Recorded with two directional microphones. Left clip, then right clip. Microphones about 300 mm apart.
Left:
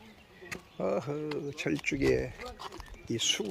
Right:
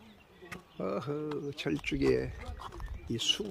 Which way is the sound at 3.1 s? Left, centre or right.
Centre.